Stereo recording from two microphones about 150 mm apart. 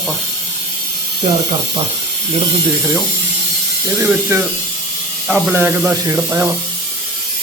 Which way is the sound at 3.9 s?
15° right (ahead or behind).